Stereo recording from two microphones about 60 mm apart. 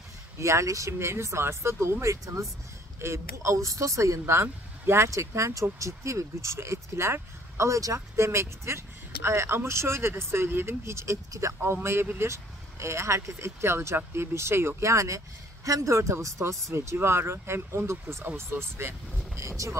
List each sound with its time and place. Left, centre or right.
0.4 s speech: right
19.5 s speech: right